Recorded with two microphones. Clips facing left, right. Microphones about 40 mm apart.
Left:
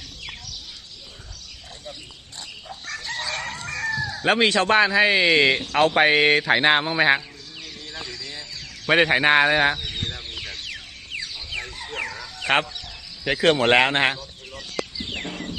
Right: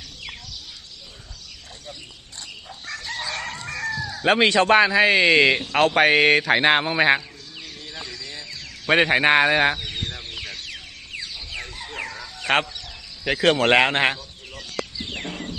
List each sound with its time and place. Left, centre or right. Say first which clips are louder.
2.7 s chicken: left 1 dB; centre
11.5 s fowl: left 3 dB; centre
13.2 s a sound: even; centre